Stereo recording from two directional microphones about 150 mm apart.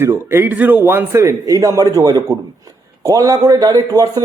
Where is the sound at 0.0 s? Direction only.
15° right (ahead or behind).